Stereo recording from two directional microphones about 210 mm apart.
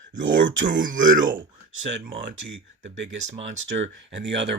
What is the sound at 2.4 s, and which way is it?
Female singing, 60° right (ahead or behind).